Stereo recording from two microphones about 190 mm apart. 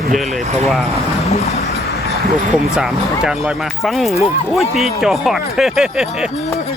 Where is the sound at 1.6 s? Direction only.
55° left (ahead or behind).